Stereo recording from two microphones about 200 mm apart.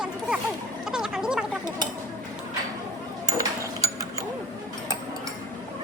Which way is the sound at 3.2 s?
15° right (ahead or behind).